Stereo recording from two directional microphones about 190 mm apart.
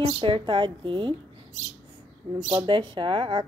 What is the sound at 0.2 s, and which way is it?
Speech, 25° right (ahead or behind).